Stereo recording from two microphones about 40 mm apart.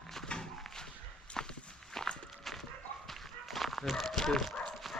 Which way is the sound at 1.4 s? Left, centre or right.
Centre.